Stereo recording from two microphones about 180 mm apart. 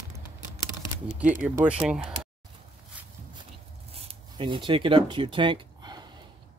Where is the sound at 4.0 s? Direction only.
30° right (ahead or behind).